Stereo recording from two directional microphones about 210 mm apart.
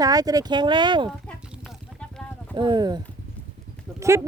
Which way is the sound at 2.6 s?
20° right (ahead or behind).